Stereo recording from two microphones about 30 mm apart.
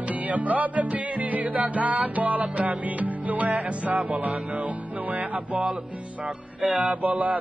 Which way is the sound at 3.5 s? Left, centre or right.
Right.